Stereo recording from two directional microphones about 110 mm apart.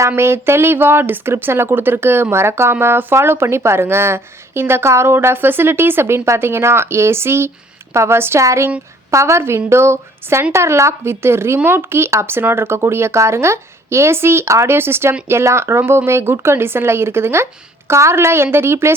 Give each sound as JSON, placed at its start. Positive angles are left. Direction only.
{"t": 0.2, "sound": "speech", "side_deg": -25}